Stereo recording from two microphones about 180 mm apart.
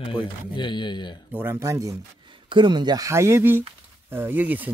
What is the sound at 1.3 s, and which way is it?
Speech, 15° right (ahead or behind).